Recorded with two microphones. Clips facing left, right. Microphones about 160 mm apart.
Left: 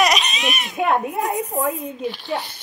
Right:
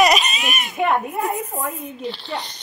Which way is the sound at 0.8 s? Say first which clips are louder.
Left 1 dB; 20° left (ahead or behind).